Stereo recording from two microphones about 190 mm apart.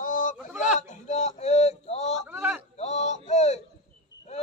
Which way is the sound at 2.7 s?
35° left (ahead or behind).